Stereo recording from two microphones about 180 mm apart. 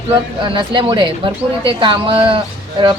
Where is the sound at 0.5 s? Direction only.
25° right (ahead or behind).